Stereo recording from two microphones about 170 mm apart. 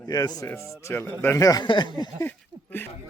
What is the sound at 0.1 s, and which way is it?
Speech, 20° left (ahead or behind).